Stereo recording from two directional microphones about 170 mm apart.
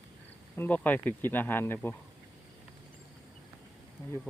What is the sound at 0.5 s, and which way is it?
Speech, 10° left (ahead or behind).